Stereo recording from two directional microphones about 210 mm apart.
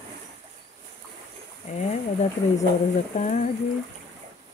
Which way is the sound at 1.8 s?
35° left (ahead or behind).